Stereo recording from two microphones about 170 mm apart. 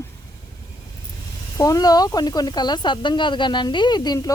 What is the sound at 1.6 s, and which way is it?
Speech, 20° left (ahead or behind).